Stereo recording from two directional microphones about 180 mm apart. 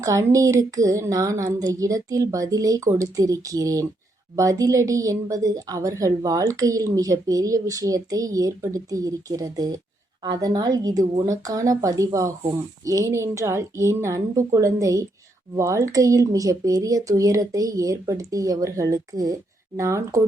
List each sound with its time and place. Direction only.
0.0 s a woman's voice: 20° right (ahead or behind)